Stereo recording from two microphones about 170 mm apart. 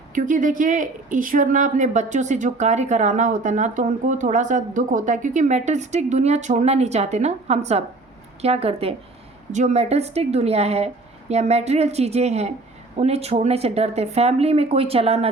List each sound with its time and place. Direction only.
0.1 s speech: 50° right (ahead or behind)